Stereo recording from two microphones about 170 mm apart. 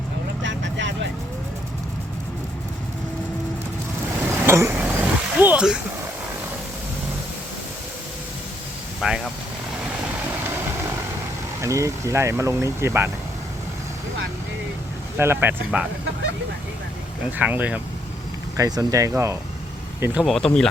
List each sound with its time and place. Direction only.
0.4 s vehicle: 90° right
4.2 s vehicle: 15° right (ahead or behind)
9.0 s speech: centre (ahead or behind)
11.6 s speech: 15° right (ahead or behind)
15.2 s speech: 15° right (ahead or behind)
17.3 s speech: 10° right (ahead or behind)
18.5 s speech: 20° right (ahead or behind)
20.2 s speech: 5° left (ahead or behind)